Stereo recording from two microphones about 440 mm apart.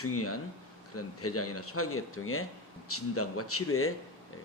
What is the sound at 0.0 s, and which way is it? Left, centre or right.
Speech, left.